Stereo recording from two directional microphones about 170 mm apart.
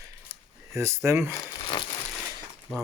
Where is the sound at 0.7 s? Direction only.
15° right (ahead or behind).